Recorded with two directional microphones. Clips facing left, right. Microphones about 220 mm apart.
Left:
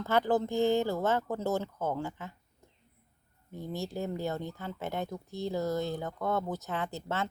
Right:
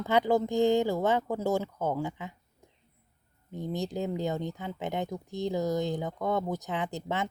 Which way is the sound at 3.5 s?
20° right (ahead or behind).